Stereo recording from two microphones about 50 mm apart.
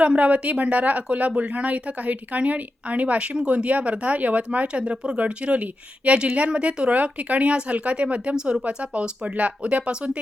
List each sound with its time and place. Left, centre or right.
0.0 s a woman's voice: right